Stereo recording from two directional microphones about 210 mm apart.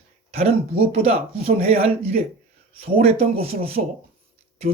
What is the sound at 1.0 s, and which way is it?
Speech, 30° right (ahead or behind).